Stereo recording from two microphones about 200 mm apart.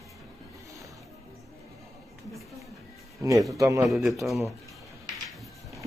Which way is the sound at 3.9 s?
Centre (ahead or behind).